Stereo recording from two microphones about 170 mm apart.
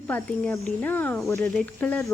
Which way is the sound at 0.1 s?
10° left (ahead or behind).